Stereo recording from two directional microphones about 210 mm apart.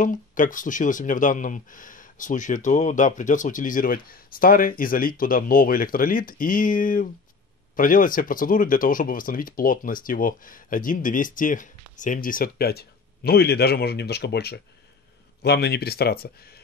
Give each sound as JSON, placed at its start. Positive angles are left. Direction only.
{"t": 0.0, "sound": "speech", "side_deg": 40}